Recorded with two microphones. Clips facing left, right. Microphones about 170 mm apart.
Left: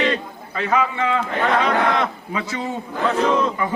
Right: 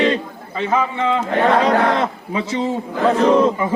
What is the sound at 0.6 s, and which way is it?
Speech, 20° right (ahead or behind).